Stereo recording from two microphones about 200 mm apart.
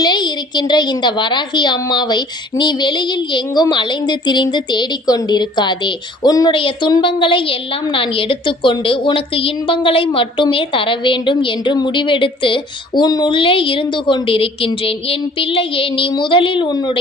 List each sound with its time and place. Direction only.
0.0 s a woman's voice: 20° left (ahead or behind)